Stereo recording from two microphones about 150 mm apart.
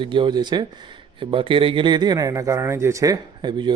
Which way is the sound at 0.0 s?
35° right (ahead or behind).